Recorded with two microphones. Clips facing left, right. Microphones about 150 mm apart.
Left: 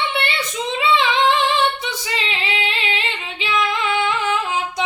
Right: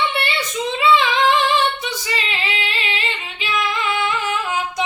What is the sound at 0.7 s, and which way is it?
Female singing, 25° left (ahead or behind).